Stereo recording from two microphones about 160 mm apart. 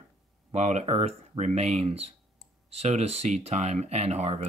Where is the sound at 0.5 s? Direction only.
45° right (ahead or behind).